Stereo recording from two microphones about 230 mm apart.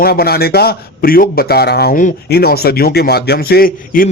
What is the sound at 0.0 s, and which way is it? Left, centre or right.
A man's voice, left.